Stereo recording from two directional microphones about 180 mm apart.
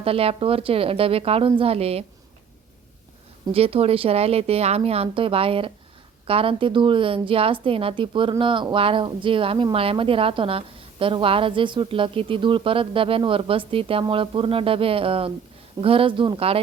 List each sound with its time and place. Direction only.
0.0 s speech: 30° right (ahead or behind)
3.5 s a woman's voice: 35° right (ahead or behind)